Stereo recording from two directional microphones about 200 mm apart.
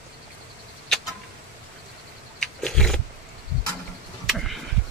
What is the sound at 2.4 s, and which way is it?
Roaring cats, 5° left (ahead or behind).